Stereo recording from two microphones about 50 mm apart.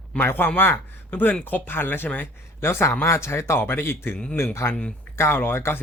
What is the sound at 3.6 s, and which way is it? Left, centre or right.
Speech, left.